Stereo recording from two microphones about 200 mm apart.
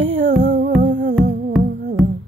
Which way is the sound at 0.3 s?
55° right (ahead or behind).